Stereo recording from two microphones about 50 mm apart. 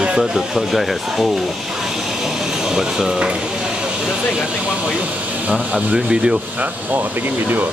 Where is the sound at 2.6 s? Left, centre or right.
Centre.